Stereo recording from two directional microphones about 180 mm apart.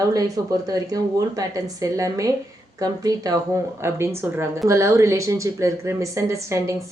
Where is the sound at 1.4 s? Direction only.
20° right (ahead or behind).